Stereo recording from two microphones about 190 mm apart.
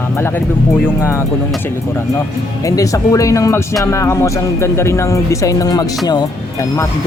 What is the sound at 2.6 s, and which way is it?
Speech, 15° left (ahead or behind).